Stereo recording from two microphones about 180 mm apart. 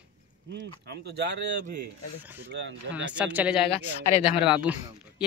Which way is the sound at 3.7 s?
40° left (ahead or behind).